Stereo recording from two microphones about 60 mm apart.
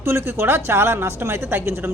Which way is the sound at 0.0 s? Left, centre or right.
Right.